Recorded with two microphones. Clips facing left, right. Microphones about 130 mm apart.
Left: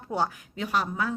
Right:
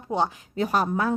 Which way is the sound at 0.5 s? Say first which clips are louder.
Right 6 dB; 40° right (ahead or behind).